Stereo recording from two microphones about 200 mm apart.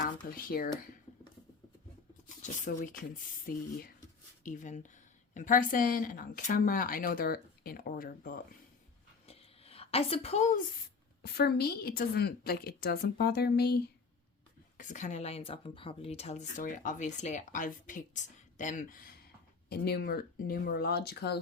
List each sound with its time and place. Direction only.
0.0 s speech: 45° left (ahead or behind)
2.4 s speech: 40° left (ahead or behind)
9.2 s a sound: 30° left (ahead or behind)
11.2 s speech: 50° left (ahead or behind)
14.8 s speech: 40° left (ahead or behind)